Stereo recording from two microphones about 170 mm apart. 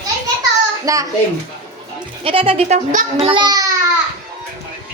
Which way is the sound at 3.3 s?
25° right (ahead or behind).